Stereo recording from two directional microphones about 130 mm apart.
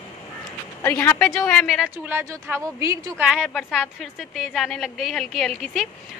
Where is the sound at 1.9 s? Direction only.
15° right (ahead or behind).